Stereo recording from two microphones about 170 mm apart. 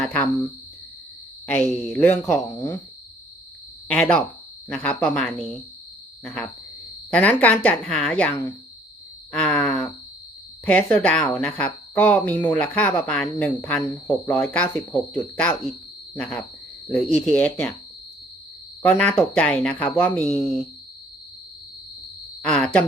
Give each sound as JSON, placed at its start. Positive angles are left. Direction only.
{"t": 0.0, "sound": "speech", "side_deg": 10}
{"t": 1.5, "sound": "speech", "side_deg": 10}
{"t": 3.8, "sound": "speech", "side_deg": 5}
{"t": 7.1, "sound": "speech", "side_deg": 10}
{"t": 9.3, "sound": "groan", "side_deg": 5}
{"t": 10.7, "sound": "speech", "side_deg": 10}
{"t": 18.9, "sound": "speech", "side_deg": 10}
{"t": 20.2, "sound": "speech", "side_deg": 40}
{"t": 22.4, "sound": "a sound", "side_deg": 5}